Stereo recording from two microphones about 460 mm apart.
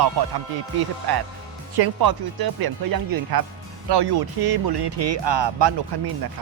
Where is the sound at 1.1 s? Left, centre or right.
Right.